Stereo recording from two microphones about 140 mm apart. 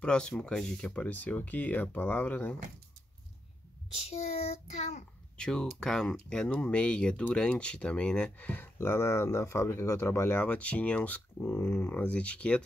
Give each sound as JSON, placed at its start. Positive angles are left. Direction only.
{"t": 0.0, "sound": "speech", "side_deg": 5}
{"t": 4.1, "sound": "child singing", "side_deg": 50}
{"t": 5.4, "sound": "speech", "side_deg": 5}